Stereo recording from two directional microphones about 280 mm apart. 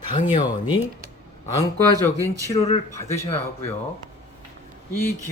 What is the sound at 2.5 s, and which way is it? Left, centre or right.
Speech, left.